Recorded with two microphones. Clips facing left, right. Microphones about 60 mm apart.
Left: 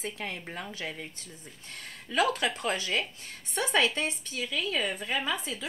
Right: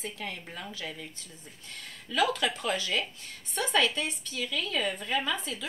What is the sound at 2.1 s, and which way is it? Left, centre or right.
Speech, left.